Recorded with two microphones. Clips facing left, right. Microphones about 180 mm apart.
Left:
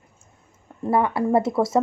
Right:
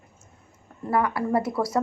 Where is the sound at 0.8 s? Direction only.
25° left (ahead or behind).